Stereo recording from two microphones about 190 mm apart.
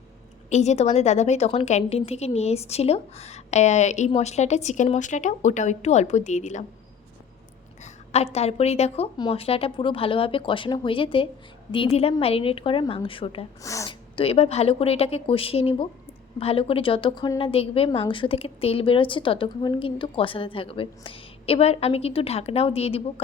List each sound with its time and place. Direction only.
0.5 s a woman's voice: 35° left (ahead or behind)
7.8 s a woman's voice: 35° left (ahead or behind)
13.6 s speech: 15° left (ahead or behind)
14.2 s a woman's voice: 30° left (ahead or behind)